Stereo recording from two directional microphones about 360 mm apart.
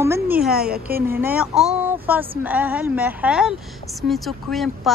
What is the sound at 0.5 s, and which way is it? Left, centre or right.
Speech, right.